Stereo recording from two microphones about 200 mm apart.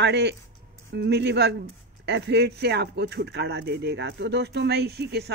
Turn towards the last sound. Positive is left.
turn(degrees=-55)  # may be behind; listen again after turning